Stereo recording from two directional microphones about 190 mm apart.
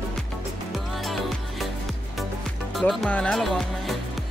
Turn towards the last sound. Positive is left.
turn(degrees=0)  # may be behind; listen again after turning